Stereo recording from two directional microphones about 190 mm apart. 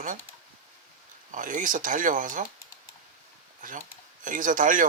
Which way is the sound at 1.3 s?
45° right (ahead or behind).